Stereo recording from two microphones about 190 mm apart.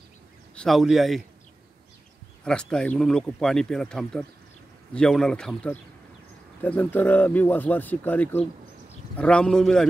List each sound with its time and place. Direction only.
0.6 s speech: centre (ahead or behind)
2.4 s speech: 5° left (ahead or behind)